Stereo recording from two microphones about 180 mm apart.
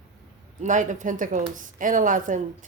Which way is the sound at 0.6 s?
45° right (ahead or behind).